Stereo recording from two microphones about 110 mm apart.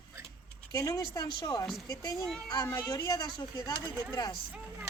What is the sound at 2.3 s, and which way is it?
Speech, 5° left (ahead or behind).